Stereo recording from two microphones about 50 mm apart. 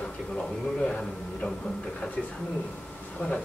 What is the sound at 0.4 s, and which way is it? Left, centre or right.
A man's voice, centre.